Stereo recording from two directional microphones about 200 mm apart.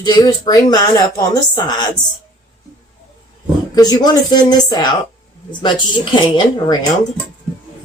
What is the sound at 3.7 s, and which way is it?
A woman's voice, 20° left (ahead or behind).